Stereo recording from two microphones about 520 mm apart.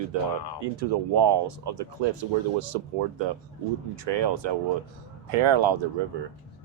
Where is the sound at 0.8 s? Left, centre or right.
Right.